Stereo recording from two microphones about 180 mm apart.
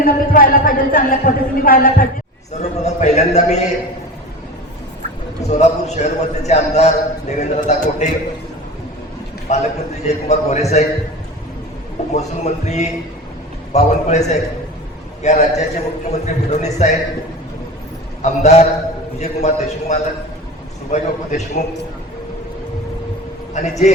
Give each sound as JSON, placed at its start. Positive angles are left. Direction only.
{"t": 0.0, "sound": "speech", "side_deg": 50}
{"t": 2.5, "sound": "a man's voice", "side_deg": 40}
{"t": 5.4, "sound": "a man's voice", "side_deg": 40}
{"t": 9.5, "sound": "a man's voice", "side_deg": 40}
{"t": 12.1, "sound": "a man's voice", "side_deg": 40}
{"t": 18.2, "sound": "a man's voice", "side_deg": 40}
{"t": 23.6, "sound": "a man's voice", "side_deg": 40}